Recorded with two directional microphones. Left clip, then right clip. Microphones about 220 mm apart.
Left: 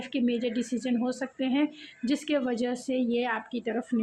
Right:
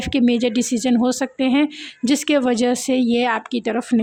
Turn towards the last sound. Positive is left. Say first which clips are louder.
# right 10 dB
turn(degrees=-50)  # may be behind; listen again after turning